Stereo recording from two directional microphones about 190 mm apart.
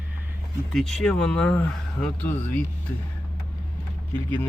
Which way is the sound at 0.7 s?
Centre (ahead or behind).